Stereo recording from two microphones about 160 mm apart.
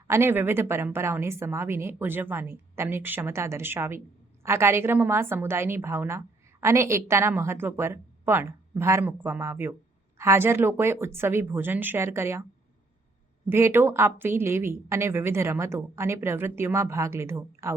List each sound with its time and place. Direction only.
0.1 s a woman's voice: 15° right (ahead or behind)
13.5 s a woman's voice: 15° right (ahead or behind)